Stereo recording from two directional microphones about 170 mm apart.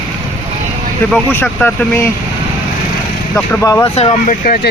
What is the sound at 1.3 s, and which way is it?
Speech, 10° left (ahead or behind).